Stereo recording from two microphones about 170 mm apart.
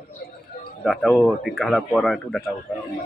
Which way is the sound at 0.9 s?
Centre (ahead or behind).